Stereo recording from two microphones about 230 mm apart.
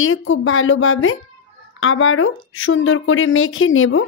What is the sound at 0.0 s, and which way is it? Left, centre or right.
A woman's voice, left.